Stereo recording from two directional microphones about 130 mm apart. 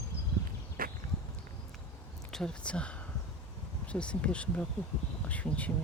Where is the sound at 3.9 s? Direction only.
10° left (ahead or behind).